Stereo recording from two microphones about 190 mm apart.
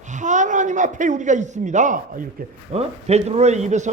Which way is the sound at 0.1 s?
40° right (ahead or behind).